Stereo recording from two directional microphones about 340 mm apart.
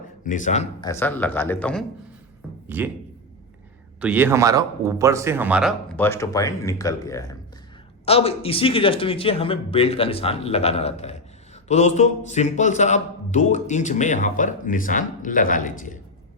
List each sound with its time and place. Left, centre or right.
0.3 s a man's voice: left; by 2.9 s centre
4.0 s a man's voice: centre; by 15.7 s left